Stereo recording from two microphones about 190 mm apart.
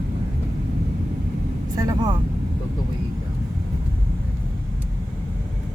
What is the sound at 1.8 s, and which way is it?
Speech, 20° right (ahead or behind).